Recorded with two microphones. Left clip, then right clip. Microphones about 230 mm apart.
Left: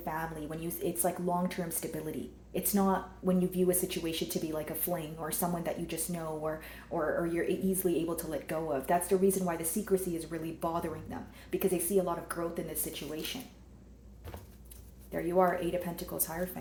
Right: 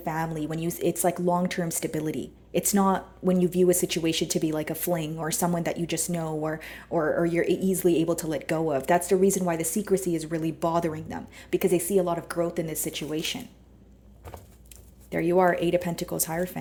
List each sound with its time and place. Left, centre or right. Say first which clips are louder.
0.0 s a woman's voice: right 7 dB; right
15.1 s a woman's voice: right 6 dB; right